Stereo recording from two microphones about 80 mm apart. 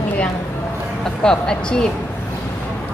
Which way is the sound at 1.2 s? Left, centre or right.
Centre.